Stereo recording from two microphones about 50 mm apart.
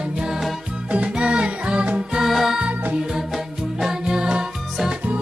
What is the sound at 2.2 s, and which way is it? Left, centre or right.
Music, centre.